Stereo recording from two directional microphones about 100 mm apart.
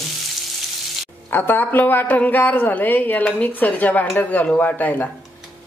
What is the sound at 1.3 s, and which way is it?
A woman's voice, 20° left (ahead or behind).